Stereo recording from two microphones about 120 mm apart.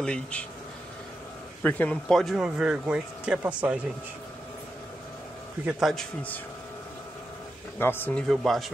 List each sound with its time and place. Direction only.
0.0 s speech: 10° left (ahead or behind)
1.6 s speech: 15° left (ahead or behind); by 3.8 s 10° right (ahead or behind)
5.7 s a man's voice: centre (ahead or behind)
7.8 s speech: 20° left (ahead or behind)
8.1 s a man's voice: 10° left (ahead or behind)